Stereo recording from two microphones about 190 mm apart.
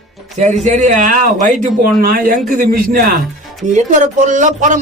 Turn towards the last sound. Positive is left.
turn(degrees=-40)  # may be behind; listen again after turning